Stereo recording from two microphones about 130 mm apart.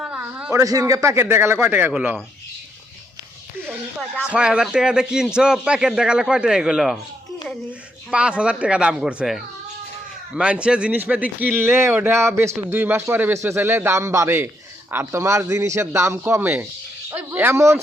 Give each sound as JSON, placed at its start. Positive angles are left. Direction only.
{"t": 0.0, "sound": "a sound", "side_deg": -10}
{"t": 0.5, "sound": "a man's voice", "side_deg": -25}
{"t": 4.3, "sound": "a man's voice", "side_deg": -5}
{"t": 8.1, "sound": "a man's voice", "side_deg": -5}